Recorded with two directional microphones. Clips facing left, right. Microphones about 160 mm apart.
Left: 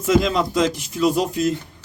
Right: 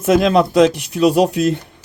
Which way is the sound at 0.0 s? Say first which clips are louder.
Right 5 dB; 65° right (ahead or behind).